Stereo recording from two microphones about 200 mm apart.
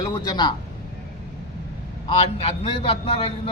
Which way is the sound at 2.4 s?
25° left (ahead or behind).